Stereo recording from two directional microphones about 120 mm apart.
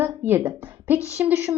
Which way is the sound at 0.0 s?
20° right (ahead or behind).